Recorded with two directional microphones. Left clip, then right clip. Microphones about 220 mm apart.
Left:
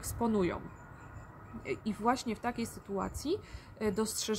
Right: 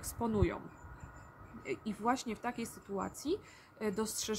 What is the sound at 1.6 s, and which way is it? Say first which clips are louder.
Speech: left 3 dB; 5° left (ahead or behind).